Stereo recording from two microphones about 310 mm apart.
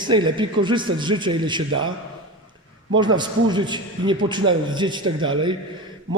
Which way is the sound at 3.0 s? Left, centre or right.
Centre.